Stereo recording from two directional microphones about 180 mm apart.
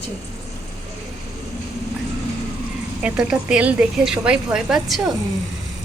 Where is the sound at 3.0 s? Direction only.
5° right (ahead or behind).